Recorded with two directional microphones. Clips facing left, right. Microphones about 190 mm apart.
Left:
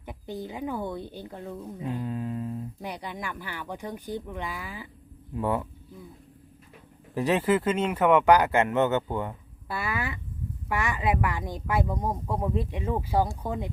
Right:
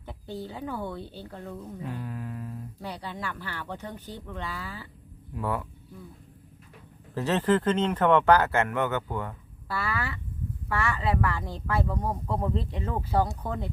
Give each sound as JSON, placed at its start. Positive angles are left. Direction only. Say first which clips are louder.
{"t": 0.0, "sound": "speech", "louder": "left 1 dB", "side_deg": 15}
{"t": 7.1, "sound": "speech", "louder": "left 1 dB", "side_deg": 15}